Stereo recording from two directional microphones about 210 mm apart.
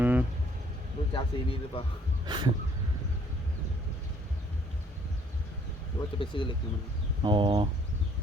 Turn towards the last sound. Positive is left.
turn(degrees=-25)  # may be behind; listen again after turning